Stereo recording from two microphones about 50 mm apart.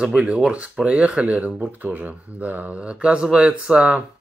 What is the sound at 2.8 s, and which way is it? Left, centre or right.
Speech, right.